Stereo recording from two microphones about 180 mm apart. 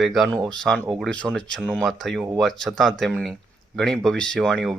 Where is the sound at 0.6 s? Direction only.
5° left (ahead or behind).